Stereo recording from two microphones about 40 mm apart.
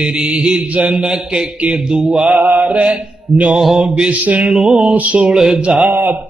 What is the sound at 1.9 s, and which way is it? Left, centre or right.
Mantra, centre.